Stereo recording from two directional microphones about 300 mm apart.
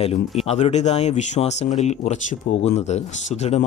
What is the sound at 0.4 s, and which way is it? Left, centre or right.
Speech, left.